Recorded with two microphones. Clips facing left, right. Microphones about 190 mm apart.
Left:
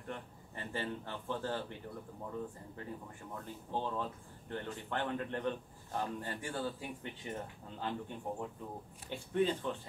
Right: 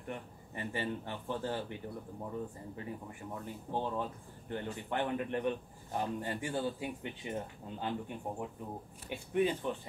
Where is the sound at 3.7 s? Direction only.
15° right (ahead or behind).